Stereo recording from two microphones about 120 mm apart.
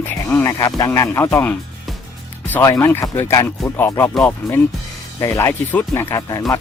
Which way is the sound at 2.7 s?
25° left (ahead or behind).